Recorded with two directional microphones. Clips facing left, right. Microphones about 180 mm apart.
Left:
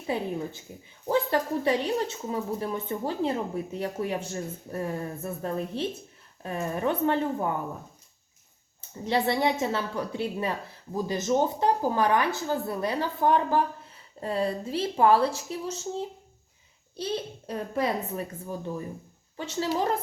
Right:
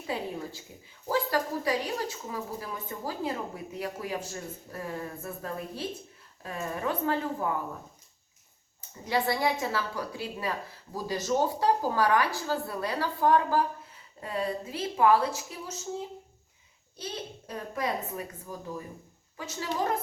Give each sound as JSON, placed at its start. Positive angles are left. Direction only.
{"t": 1.0, "sound": "a woman's voice", "side_deg": 25}
{"t": 9.0, "sound": "a woman's voice", "side_deg": 25}